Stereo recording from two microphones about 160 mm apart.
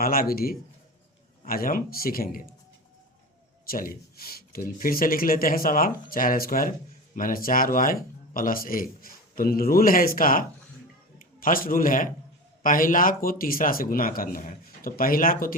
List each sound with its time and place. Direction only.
0.0 s a man's voice: 65° left (ahead or behind)
3.7 s speech: 65° left (ahead or behind)